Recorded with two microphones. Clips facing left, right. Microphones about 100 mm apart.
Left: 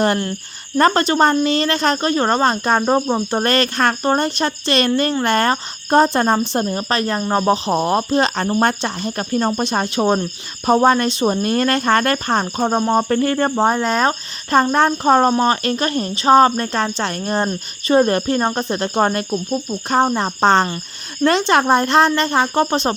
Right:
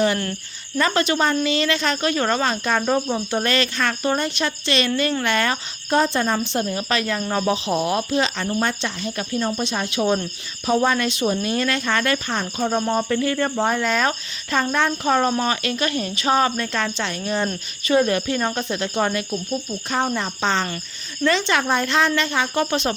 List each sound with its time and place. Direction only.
0.8 s speech: 40° left (ahead or behind)
11.4 s speech: 50° left (ahead or behind)